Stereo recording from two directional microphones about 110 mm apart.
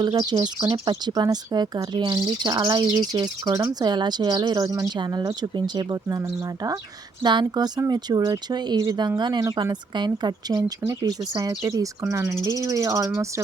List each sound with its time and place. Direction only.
0.0 s speech: 40° right (ahead or behind)
12.5 s cricket: 30° right (ahead or behind)